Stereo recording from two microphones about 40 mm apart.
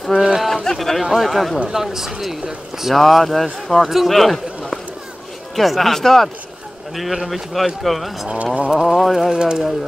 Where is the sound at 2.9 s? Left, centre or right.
Centre.